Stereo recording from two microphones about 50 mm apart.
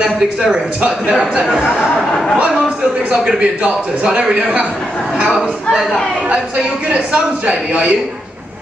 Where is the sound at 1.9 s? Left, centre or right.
Centre.